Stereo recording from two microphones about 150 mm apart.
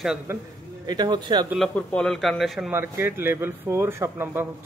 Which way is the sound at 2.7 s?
15° right (ahead or behind).